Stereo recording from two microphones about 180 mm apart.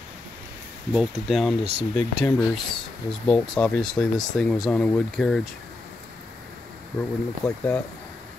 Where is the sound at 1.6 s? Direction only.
35° right (ahead or behind).